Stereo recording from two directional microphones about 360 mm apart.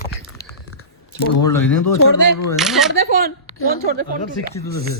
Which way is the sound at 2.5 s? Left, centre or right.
Centre.